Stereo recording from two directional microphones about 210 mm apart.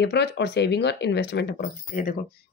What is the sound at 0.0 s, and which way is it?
Speech, 50° left (ahead or behind).